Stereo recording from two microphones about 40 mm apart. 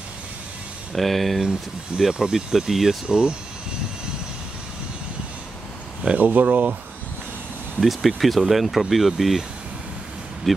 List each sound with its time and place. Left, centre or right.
0.9 s speech: centre
2.0 s speech: centre
3.1 s speech: right
6.1 s speech: right
7.8 s speech: centre